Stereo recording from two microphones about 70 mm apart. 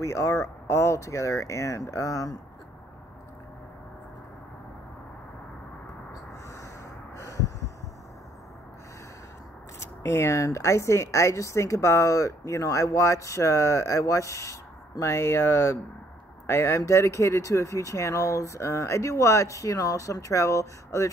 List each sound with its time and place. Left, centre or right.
0.0 s speech: left
7.2 s snort: left
9.8 s speech: left